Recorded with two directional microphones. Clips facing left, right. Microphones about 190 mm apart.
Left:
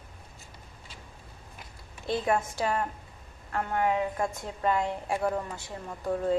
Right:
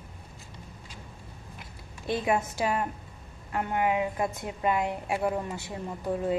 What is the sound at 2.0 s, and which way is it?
A woman's voice, 15° right (ahead or behind).